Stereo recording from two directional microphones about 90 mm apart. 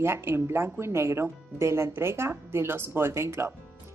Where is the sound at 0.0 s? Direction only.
30° right (ahead or behind).